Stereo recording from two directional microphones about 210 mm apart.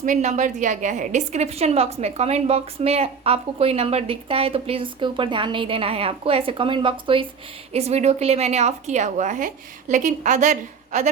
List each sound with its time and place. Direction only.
0.0 s a woman's voice: 35° right (ahead or behind)